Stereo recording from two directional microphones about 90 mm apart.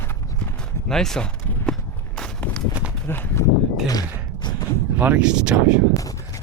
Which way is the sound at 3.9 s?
45° left (ahead or behind).